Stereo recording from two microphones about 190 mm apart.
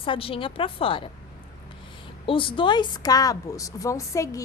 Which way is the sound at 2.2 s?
25° left (ahead or behind).